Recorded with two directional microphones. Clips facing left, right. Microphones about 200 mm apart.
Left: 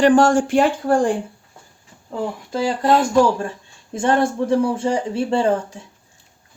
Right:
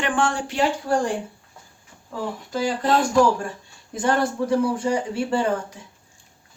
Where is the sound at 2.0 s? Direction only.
25° left (ahead or behind).